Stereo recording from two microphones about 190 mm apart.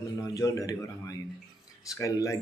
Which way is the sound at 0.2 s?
20° left (ahead or behind).